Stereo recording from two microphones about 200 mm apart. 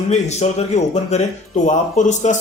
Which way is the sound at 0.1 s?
35° left (ahead or behind).